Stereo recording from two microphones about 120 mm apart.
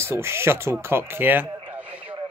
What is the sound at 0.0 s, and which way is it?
A man's voice, 20° right (ahead or behind).